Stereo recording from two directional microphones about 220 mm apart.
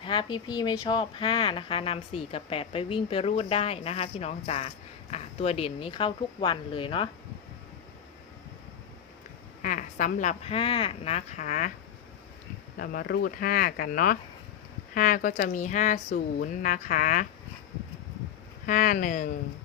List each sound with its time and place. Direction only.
0.0 s speech: 20° left (ahead or behind)
9.6 s speech: 35° left (ahead or behind)
12.8 s speech: 45° left (ahead or behind)
18.6 s speech: 40° left (ahead or behind)